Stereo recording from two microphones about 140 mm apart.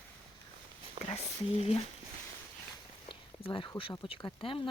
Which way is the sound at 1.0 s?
45° right (ahead or behind).